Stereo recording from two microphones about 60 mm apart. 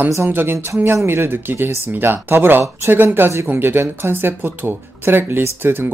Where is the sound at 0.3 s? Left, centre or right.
Right.